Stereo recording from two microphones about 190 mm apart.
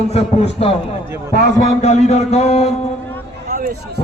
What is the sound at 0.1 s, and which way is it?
Speech, 35° left (ahead or behind).